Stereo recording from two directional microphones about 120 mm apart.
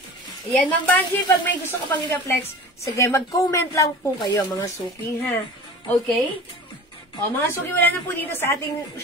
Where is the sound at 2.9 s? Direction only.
25° left (ahead or behind).